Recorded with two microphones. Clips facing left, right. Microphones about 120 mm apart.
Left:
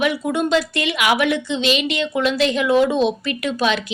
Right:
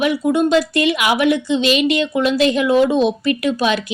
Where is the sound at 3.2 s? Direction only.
45° right (ahead or behind).